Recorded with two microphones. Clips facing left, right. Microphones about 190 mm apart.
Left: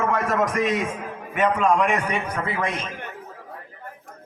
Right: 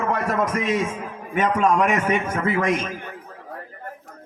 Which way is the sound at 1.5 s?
45° right (ahead or behind).